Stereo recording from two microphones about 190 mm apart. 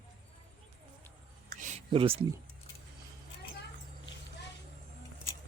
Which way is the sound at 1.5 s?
40° right (ahead or behind).